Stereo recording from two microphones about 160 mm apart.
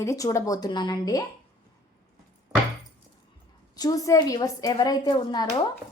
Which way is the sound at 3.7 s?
20° left (ahead or behind).